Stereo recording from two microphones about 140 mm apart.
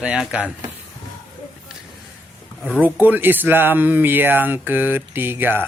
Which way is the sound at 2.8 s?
10° right (ahead or behind).